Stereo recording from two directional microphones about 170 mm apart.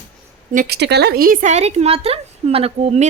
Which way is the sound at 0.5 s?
70° right (ahead or behind).